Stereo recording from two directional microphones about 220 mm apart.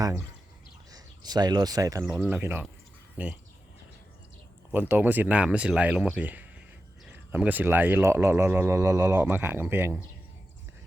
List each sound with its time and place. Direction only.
0.9 s speech: 15° right (ahead or behind)
4.7 s speech: 10° right (ahead or behind)